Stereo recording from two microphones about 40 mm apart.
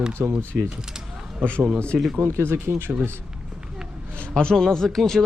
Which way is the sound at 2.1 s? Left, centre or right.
Right.